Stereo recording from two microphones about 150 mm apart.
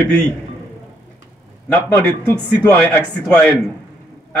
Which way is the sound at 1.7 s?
10° left (ahead or behind).